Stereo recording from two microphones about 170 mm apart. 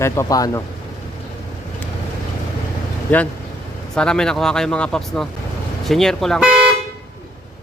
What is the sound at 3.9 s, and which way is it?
Speech, 5° left (ahead or behind).